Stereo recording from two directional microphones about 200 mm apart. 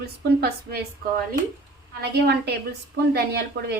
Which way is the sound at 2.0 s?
55° right (ahead or behind).